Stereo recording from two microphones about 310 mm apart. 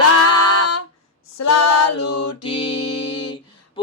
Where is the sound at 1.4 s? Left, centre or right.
Left.